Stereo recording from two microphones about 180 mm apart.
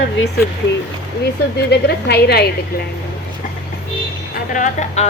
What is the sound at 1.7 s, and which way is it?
Speech, 65° left (ahead or behind).